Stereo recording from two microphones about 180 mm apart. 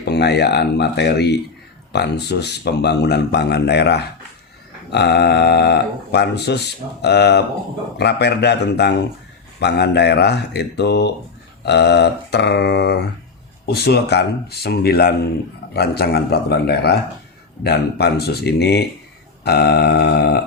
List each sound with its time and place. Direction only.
0.0 s speech: 70° left (ahead or behind)